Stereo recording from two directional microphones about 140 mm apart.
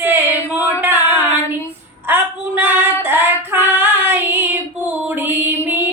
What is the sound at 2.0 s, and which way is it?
Female singing, 15° right (ahead or behind).